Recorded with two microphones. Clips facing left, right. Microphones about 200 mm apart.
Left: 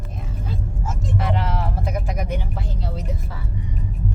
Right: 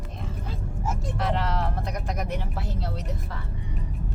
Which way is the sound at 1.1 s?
Centre (ahead or behind).